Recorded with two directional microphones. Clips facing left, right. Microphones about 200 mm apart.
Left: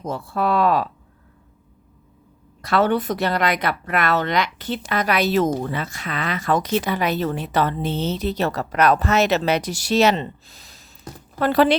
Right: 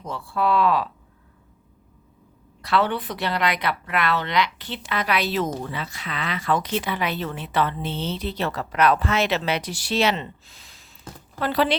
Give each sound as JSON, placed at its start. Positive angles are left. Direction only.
{"t": 0.0, "sound": "a woman's voice", "side_deg": 45}
{"t": 2.6, "sound": "a woman's voice", "side_deg": 45}